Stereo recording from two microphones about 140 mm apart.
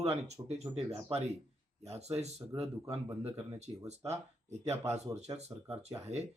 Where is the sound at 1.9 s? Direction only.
50° right (ahead or behind).